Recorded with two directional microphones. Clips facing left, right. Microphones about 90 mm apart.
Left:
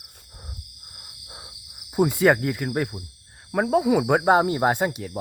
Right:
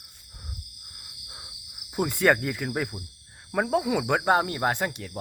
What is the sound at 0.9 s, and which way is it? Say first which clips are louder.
Cricket: left 2 dB; 25° left (ahead or behind).